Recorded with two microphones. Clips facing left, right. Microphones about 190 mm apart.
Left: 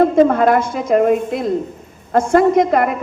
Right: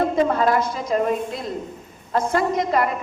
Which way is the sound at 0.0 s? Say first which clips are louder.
Left 7 dB; 50° left (ahead or behind).